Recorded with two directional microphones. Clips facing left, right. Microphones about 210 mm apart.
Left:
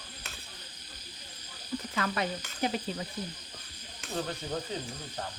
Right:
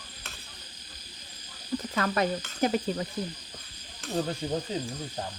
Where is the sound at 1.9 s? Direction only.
45° right (ahead or behind).